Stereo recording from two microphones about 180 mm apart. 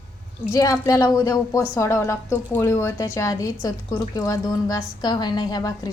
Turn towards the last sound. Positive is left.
turn(degrees=20)  # may be behind; listen again after turning